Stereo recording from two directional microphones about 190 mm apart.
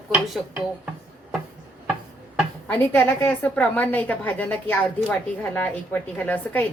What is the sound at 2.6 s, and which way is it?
A woman's voice, 10° left (ahead or behind).